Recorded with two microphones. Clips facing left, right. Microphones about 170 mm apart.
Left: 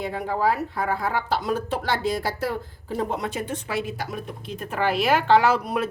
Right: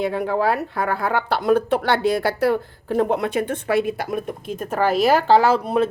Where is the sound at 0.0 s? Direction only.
70° right (ahead or behind).